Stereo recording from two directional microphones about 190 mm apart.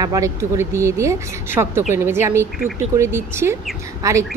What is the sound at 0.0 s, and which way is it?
Speech, 15° right (ahead or behind).